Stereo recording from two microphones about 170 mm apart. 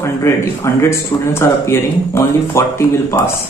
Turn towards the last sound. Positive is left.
turn(degrees=15)  # may be behind; listen again after turning